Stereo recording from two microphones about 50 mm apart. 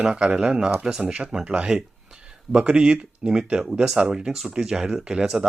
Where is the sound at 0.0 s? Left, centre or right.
Centre.